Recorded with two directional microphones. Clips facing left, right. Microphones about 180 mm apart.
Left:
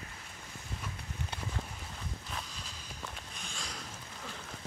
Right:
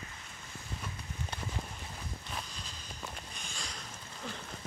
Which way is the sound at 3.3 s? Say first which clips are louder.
Left 1 dB; centre (ahead or behind).